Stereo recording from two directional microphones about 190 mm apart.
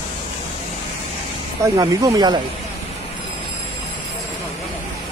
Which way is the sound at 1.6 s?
20° right (ahead or behind).